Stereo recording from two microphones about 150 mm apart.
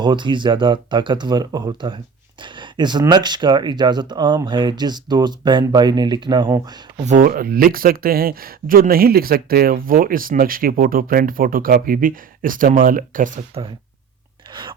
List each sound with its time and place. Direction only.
0.0 s speech: 30° right (ahead or behind)
7.0 s speech: 60° right (ahead or behind)
14.5 s a sound: 30° right (ahead or behind)